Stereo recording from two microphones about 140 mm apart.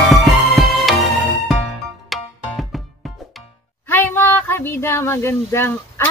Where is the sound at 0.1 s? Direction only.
Centre (ahead or behind).